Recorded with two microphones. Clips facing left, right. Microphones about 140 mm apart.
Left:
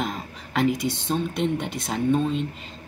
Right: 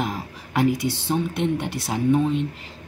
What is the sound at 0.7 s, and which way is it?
Speech, 65° right (ahead or behind).